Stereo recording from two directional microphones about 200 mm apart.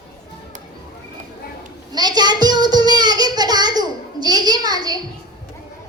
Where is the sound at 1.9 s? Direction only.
20° right (ahead or behind).